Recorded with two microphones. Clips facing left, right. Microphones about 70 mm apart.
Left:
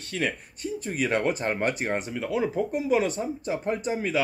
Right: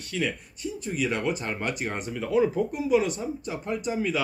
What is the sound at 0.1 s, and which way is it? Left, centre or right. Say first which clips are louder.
Speech: even; left.